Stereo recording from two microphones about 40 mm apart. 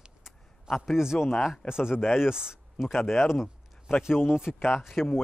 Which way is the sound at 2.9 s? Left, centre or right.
Centre.